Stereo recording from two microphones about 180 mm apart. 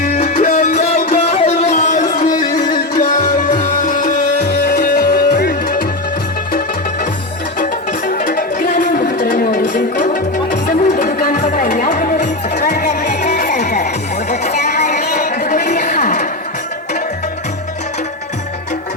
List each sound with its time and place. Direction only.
0.0 s music: 40° left (ahead or behind)
0.9 s music: 35° left (ahead or behind)
5.3 s music: 60° left (ahead or behind)
7.6 s music: 45° left (ahead or behind)
9.0 s a sound: 65° left (ahead or behind)
9.3 s music: 50° left (ahead or behind)
10.0 s music: 45° left (ahead or behind)
14.3 s a sound: 40° left (ahead or behind)